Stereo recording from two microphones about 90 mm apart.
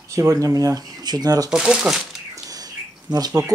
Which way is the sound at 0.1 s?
35° right (ahead or behind).